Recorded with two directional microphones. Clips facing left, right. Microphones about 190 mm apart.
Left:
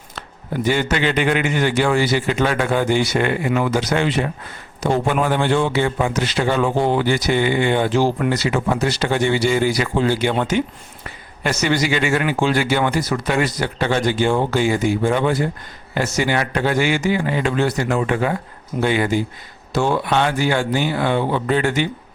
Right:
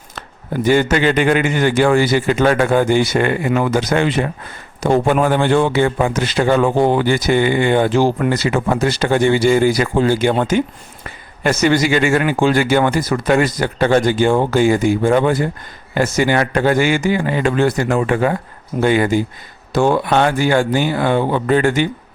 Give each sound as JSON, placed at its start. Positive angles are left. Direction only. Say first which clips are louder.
{"t": 0.7, "sound": "a man's voice", "louder": "right 6 dB", "side_deg": -50}